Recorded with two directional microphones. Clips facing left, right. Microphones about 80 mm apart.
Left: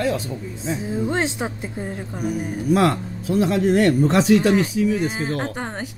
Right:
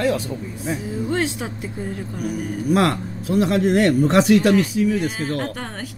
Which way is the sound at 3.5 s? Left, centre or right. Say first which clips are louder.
Even; right.